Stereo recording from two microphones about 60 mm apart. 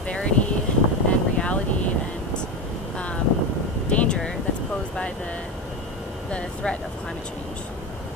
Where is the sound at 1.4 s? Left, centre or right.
Left.